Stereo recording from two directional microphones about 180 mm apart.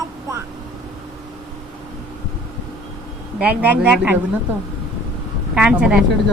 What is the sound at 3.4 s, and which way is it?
Speech, 10° right (ahead or behind).